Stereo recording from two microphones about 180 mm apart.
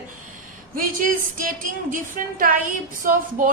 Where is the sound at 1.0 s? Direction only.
50° right (ahead or behind).